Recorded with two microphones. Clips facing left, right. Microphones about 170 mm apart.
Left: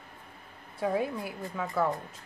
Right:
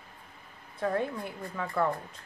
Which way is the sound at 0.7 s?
5° left (ahead or behind).